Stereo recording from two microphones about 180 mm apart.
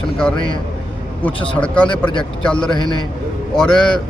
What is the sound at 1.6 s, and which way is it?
A man's voice, 5° left (ahead or behind).